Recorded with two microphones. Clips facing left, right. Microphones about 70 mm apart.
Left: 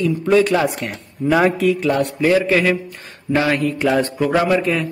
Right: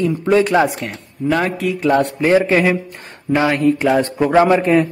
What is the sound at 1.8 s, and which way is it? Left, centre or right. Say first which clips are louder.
Speech: right 2 dB; right.